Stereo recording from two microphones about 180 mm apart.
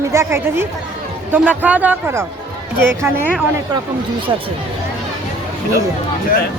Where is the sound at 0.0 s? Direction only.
15° right (ahead or behind).